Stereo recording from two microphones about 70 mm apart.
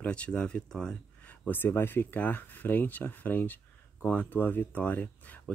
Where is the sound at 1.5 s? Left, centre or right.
Left.